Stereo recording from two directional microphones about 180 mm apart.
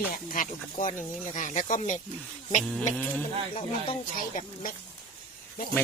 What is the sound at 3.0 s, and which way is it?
Speech, 10° left (ahead or behind).